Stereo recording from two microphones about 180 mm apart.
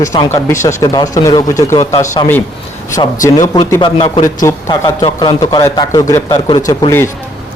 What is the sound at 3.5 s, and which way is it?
Speech, 25° left (ahead or behind).